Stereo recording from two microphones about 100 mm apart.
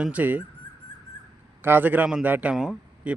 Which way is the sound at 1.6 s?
20° right (ahead or behind).